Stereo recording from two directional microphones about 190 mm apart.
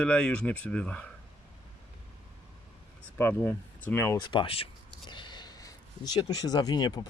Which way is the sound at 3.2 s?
10° left (ahead or behind).